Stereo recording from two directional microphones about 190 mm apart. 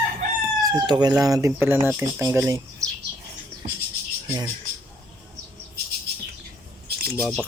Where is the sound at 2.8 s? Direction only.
15° right (ahead or behind).